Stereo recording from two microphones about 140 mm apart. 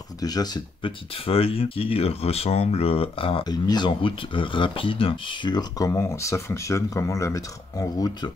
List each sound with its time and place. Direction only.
0.2 s speech: 30° left (ahead or behind)
1.1 s speech: 40° left (ahead or behind); by 8.3 s 25° left (ahead or behind)